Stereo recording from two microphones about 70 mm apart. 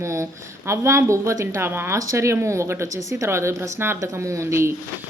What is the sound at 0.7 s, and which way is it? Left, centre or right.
A woman's voice, right.